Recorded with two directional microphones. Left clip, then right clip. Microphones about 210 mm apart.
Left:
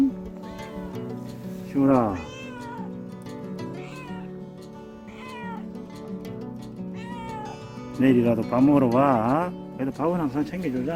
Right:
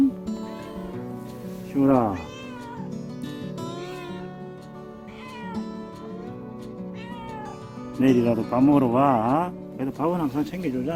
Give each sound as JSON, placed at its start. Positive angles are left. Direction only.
{"t": 1.7, "sound": "speech", "side_deg": -5}
{"t": 7.9, "sound": "speech", "side_deg": -5}